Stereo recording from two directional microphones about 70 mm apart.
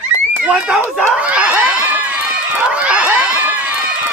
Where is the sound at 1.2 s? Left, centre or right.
Centre.